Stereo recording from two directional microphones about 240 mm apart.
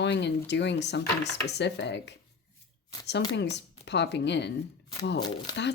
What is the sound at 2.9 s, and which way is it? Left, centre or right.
Speech, centre.